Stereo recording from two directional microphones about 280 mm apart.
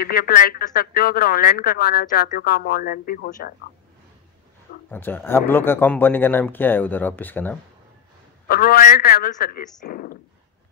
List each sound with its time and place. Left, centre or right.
0.0 s speech: left
4.9 s speech: centre
8.5 s speech: left